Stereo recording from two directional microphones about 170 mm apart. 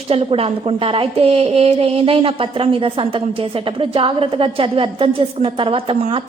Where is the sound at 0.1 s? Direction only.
35° right (ahead or behind).